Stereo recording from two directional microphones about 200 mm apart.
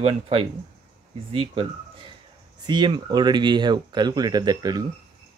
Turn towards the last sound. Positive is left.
turn(degrees=-20)  # may be behind; listen again after turning